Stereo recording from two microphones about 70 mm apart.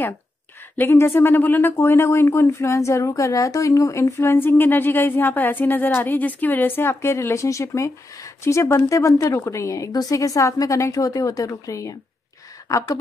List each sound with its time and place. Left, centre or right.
0.8 s speech: left
1.8 s speech: left